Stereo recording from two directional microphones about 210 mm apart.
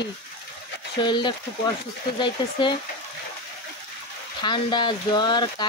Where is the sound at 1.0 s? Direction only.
20° left (ahead or behind).